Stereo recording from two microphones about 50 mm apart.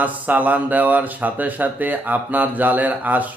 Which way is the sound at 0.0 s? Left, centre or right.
Right.